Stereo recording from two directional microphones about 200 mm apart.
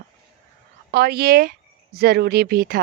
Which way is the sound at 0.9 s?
50° right (ahead or behind).